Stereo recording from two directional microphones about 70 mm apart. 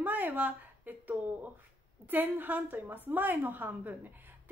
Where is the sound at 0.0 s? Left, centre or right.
Right.